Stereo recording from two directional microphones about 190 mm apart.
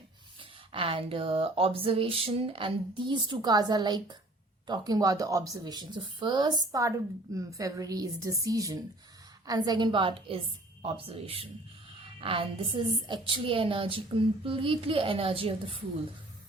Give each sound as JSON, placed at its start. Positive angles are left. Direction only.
{"t": 0.7, "sound": "speech", "side_deg": -30}